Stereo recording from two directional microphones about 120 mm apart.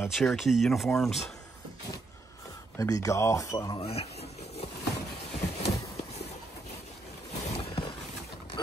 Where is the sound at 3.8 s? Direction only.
55° left (ahead or behind).